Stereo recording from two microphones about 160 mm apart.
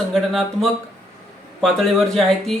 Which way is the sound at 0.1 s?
Centre (ahead or behind).